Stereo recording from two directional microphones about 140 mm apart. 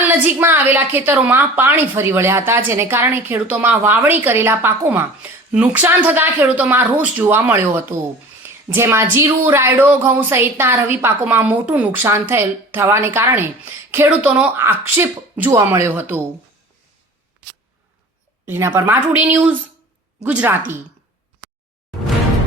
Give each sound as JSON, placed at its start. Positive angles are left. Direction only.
{"t": 0.3, "sound": "a woman's voice", "side_deg": -15}
{"t": 18.4, "sound": "a woman's voice", "side_deg": -15}